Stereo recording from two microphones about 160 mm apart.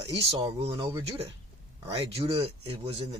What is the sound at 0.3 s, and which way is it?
Speech, 30° right (ahead or behind).